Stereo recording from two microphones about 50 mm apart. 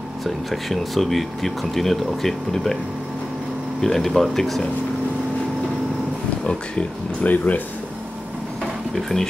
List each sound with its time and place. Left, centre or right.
0.2 s speech: centre
3.8 s speech: centre
6.4 s speech: centre
7.2 s speech: left
8.9 s speech: centre